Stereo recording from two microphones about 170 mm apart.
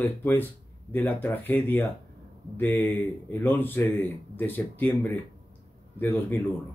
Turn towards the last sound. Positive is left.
turn(degrees=10)  # may be behind; listen again after turning